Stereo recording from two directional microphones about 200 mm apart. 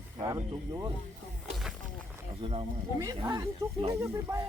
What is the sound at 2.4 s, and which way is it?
Speech, 30° right (ahead or behind).